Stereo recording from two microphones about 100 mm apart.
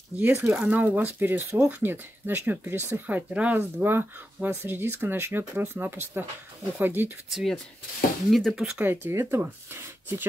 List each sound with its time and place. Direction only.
0.2 s speech: 20° right (ahead or behind)
7.2 s speech: 5° right (ahead or behind)
8.8 s speech: 25° right (ahead or behind)